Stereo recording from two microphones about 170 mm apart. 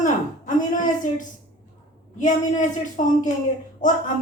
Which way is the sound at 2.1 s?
45° left (ahead or behind).